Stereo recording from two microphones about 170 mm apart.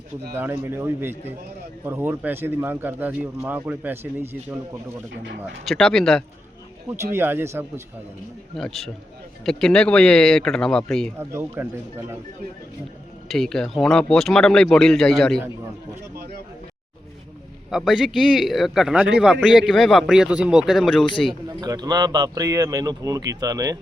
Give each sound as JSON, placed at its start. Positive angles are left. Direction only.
{"t": 0.3, "sound": "speech", "side_deg": -15}
{"t": 5.6, "sound": "speech", "side_deg": 0}
{"t": 6.8, "sound": "speech", "side_deg": -15}
{"t": 8.5, "sound": "speech", "side_deg": 0}
{"t": 11.2, "sound": "speech", "side_deg": -15}
{"t": 13.2, "sound": "speech", "side_deg": 0}
{"t": 17.7, "sound": "speech", "side_deg": 0}
{"t": 21.6, "sound": "speech", "side_deg": -25}